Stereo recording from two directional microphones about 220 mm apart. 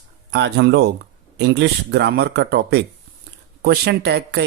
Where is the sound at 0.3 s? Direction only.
50° right (ahead or behind).